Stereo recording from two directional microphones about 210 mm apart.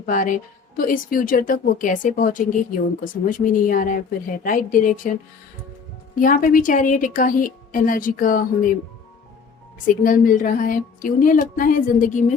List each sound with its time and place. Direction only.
0.0 s speech: 40° left (ahead or behind)
6.1 s speech: 40° left (ahead or behind)
9.8 s speech: 40° left (ahead or behind)